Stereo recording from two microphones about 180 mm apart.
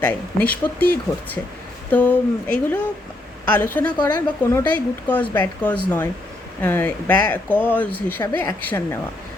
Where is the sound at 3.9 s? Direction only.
25° left (ahead or behind).